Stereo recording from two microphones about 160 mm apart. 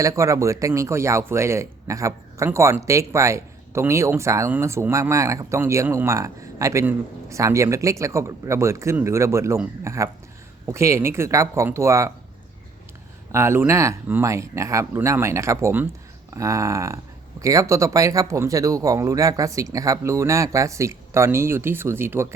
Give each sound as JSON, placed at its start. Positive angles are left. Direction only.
{"t": 0.0, "sound": "a man's voice", "side_deg": -20}
{"t": 13.3, "sound": "a man's voice", "side_deg": -15}